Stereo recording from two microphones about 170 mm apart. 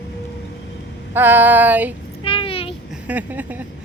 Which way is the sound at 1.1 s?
10° right (ahead or behind).